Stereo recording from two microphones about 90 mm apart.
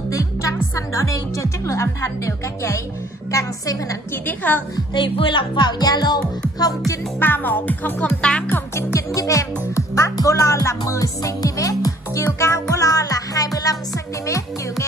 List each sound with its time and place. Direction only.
0.1 s speech: 35° left (ahead or behind)
3.3 s music: 40° left (ahead or behind)
4.1 s music: 20° left (ahead or behind)
4.9 s speech: 65° left (ahead or behind); by 6.1 s 50° left (ahead or behind)
7.2 s music: 20° left (ahead or behind)
8.2 s speech: 10° left (ahead or behind)
8.5 s music: 25° left (ahead or behind)
8.9 s music: 35° left (ahead or behind)
10.9 s speech: 40° left (ahead or behind)
12.4 s music: 35° left (ahead or behind)